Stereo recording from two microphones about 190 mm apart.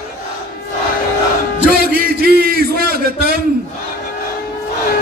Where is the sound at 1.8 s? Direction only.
55° right (ahead or behind).